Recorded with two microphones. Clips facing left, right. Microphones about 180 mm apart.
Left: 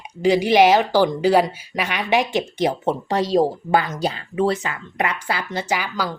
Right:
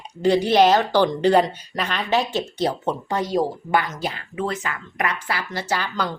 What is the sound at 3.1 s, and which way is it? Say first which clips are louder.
Speech: left 4 dB; 90° left.